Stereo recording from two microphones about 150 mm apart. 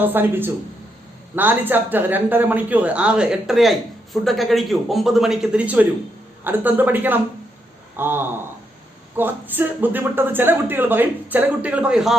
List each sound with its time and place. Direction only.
0.0 s speech: 15° right (ahead or behind)